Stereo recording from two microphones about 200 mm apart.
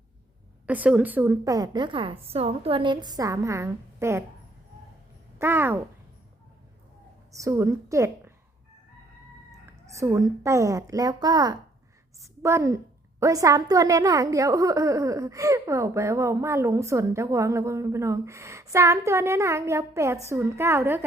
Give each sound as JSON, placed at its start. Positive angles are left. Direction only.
{"t": 0.7, "sound": "a woman's voice", "side_deg": -5}
{"t": 5.4, "sound": "a woman's voice", "side_deg": -10}
{"t": 7.3, "sound": "a woman's voice", "side_deg": -15}
{"t": 9.6, "sound": "a woman's voice", "side_deg": -15}